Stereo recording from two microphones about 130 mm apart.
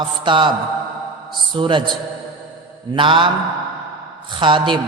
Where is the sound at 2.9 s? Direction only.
40° right (ahead or behind).